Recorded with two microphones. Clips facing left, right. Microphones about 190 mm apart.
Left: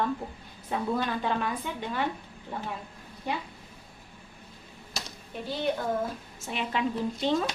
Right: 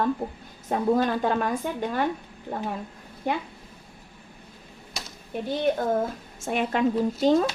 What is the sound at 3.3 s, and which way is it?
Speech, 55° right (ahead or behind).